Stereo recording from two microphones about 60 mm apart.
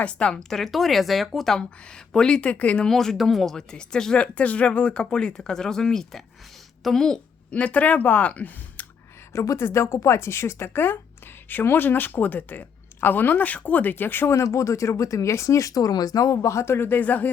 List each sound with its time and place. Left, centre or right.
0.0 s speech: centre
0.3 s speech: centre
2.1 s speech: centre
2.8 s speech: centre
7.5 s speech: left
9.3 s a woman's voice: left
11.4 s speech: left
14.3 s speech: left
17.0 s speech: left